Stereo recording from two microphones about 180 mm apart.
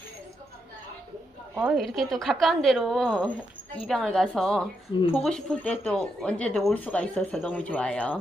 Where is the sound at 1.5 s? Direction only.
Centre (ahead or behind).